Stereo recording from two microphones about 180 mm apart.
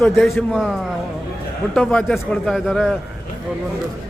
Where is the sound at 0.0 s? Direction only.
Centre (ahead or behind).